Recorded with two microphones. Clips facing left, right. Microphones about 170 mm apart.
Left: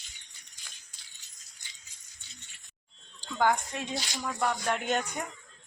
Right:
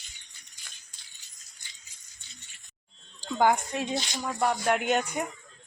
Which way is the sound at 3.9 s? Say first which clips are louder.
Right 3 dB; 20° right (ahead or behind).